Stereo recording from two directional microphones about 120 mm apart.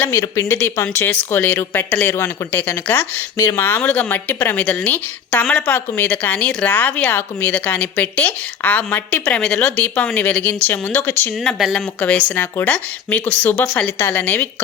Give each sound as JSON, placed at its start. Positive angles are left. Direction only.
{"t": 0.1, "sound": "speech", "side_deg": 25}